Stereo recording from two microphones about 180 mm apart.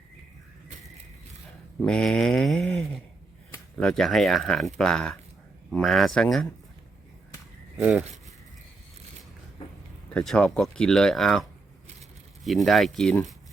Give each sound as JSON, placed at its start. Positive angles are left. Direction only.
{"t": 1.8, "sound": "speech", "side_deg": 5}
{"t": 7.8, "sound": "speech", "side_deg": -5}
{"t": 10.1, "sound": "speech", "side_deg": 5}
{"t": 12.5, "sound": "speech", "side_deg": 0}